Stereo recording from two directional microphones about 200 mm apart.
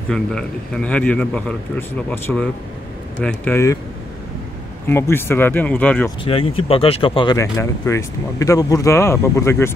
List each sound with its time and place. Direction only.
0.1 s speech: 5° left (ahead or behind)
4.8 s speech: 10° left (ahead or behind)
6.2 s speech: 25° left (ahead or behind)